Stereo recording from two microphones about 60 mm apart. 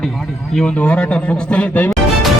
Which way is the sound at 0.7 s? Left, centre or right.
Left.